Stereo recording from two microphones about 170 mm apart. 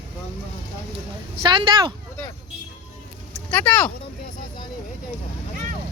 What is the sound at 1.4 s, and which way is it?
Speech, 30° right (ahead or behind).